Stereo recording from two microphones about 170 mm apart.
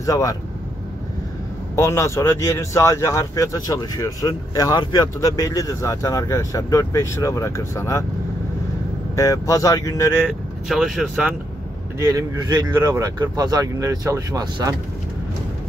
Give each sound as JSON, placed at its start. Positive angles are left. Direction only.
{"t": 0.0, "sound": "speech", "side_deg": 20}
{"t": 1.8, "sound": "speech", "side_deg": 15}
{"t": 9.1, "sound": "speech", "side_deg": 20}
{"t": 10.7, "sound": "speech", "side_deg": -5}
{"t": 12.1, "sound": "speech", "side_deg": -25}